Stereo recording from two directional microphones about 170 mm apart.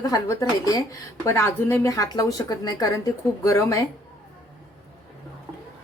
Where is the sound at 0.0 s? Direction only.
20° left (ahead or behind).